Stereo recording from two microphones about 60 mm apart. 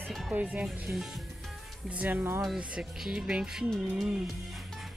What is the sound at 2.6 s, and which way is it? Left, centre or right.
Speech, centre.